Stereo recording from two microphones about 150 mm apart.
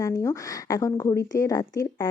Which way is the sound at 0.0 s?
20° left (ahead or behind).